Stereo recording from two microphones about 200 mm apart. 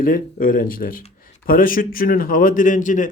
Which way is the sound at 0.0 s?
45° left (ahead or behind).